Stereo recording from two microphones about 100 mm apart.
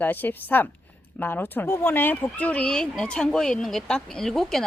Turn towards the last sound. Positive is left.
turn(degrees=5)  # may be behind; listen again after turning